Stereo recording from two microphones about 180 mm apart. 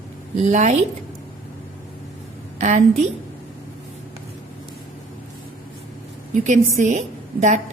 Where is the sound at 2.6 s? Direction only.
40° right (ahead or behind).